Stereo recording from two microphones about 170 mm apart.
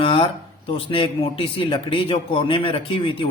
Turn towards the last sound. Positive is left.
turn(degrees=30)  # may be behind; listen again after turning